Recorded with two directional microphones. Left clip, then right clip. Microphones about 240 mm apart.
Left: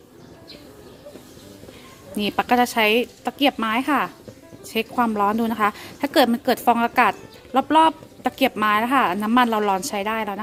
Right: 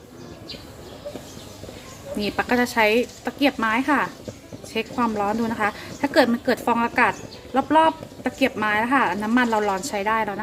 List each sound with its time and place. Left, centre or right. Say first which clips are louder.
2.1 s a woman's voice: left 3 dB; left